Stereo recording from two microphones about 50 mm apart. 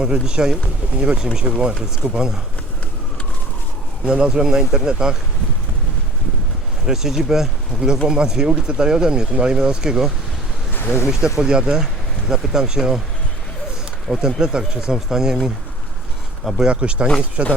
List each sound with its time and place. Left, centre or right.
0.0 s speech: centre
4.0 s speech: centre
6.8 s speech: centre
10.8 s a sound: left
11.3 s speech: centre
14.2 s speech: centre
16.6 s speech: centre